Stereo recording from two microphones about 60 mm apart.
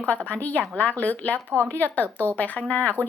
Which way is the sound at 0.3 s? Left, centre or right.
Left.